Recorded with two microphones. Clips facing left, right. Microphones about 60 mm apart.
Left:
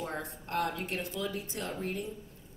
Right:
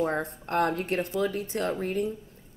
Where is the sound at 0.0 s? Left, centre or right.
Right.